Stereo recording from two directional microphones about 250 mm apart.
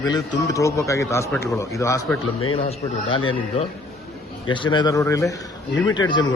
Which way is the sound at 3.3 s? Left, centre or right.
Left.